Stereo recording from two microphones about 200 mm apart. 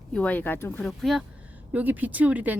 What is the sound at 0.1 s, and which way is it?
Speech, 5° left (ahead or behind).